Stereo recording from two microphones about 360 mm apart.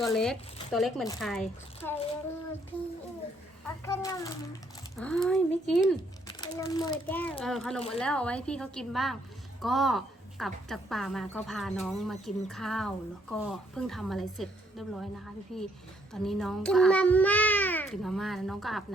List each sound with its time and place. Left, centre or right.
0.0 s a woman's voice: centre
3.8 s a child's voice: centre